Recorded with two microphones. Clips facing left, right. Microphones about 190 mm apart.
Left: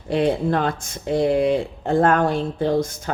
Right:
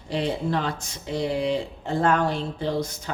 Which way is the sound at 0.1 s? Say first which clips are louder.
Left 6 dB; 55° left (ahead or behind).